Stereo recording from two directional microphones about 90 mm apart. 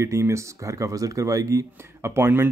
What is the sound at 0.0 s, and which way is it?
Speech, 35° right (ahead or behind).